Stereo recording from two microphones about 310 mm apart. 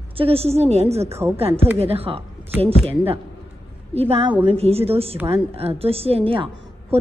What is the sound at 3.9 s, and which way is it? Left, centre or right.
A woman's voice, centre.